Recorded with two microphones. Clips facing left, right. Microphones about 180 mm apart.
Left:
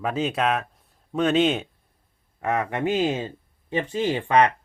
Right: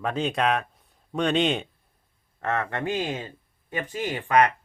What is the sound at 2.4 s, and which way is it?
Speech, 15° left (ahead or behind).